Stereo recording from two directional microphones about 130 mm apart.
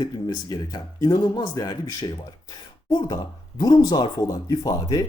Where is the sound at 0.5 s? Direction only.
30° left (ahead or behind).